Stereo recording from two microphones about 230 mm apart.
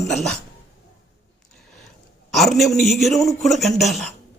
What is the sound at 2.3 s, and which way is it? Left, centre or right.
A man's voice, centre.